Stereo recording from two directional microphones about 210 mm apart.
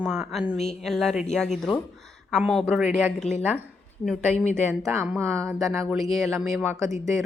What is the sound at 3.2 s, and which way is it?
Speech, 35° left (ahead or behind).